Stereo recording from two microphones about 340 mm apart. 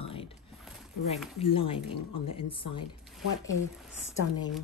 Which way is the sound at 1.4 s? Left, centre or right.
Centre.